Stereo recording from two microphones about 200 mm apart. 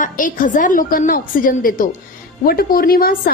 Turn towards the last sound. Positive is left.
turn(degrees=45)  # may be behind; listen again after turning